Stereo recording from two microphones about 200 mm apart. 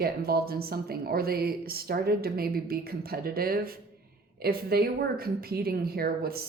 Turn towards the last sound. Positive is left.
turn(degrees=-50)  # may be behind; listen again after turning